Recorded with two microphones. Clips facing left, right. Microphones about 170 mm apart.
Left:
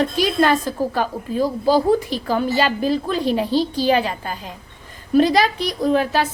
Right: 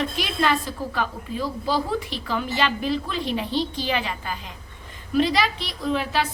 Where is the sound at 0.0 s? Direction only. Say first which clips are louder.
Left 7 dB; 40° left (ahead or behind).